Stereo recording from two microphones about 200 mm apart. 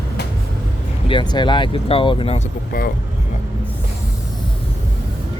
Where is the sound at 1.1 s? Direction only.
25° left (ahead or behind).